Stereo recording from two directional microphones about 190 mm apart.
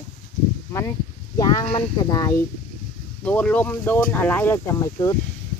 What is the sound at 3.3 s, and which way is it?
Speech, 5° left (ahead or behind).